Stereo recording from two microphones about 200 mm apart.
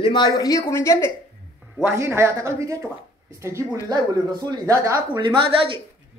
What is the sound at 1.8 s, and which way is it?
Speech, 10° right (ahead or behind).